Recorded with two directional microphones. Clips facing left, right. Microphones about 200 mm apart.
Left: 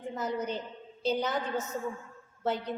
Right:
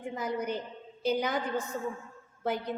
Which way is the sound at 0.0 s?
10° right (ahead or behind).